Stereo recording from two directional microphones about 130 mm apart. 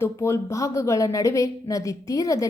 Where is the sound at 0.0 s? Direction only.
20° left (ahead or behind).